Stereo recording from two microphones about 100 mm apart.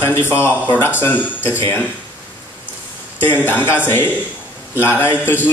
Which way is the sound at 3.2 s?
20° left (ahead or behind).